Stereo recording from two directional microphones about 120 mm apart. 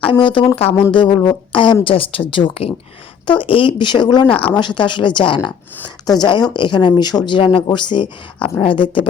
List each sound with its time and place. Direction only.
0.1 s speech: 40° left (ahead or behind)
4.3 s speech: 10° left (ahead or behind)
4.5 s speech: 40° left (ahead or behind)